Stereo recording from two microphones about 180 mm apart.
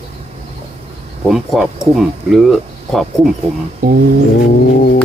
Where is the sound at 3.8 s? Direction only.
55° right (ahead or behind).